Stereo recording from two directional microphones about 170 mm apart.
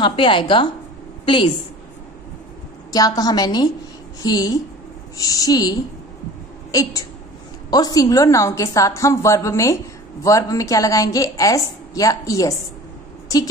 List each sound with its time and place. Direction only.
0.0 s a woman's voice: 30° left (ahead or behind)
2.9 s a woman's voice: 20° left (ahead or behind)